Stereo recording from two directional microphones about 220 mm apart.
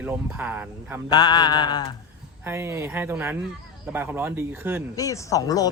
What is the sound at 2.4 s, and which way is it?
Speech, 10° right (ahead or behind).